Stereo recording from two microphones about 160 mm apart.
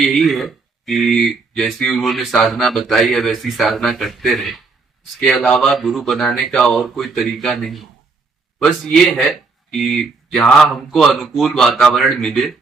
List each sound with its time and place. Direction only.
0.0 s speech: centre (ahead or behind)